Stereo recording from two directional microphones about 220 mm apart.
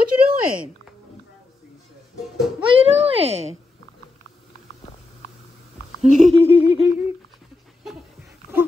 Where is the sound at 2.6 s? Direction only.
25° right (ahead or behind).